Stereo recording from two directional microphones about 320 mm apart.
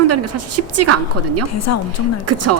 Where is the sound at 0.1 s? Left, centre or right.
Right.